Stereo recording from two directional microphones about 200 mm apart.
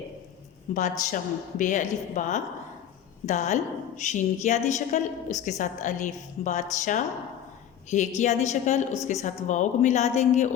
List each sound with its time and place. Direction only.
0.7 s a woman's voice: 40° left (ahead or behind)